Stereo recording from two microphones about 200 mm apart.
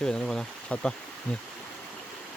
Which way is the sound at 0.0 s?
5° left (ahead or behind).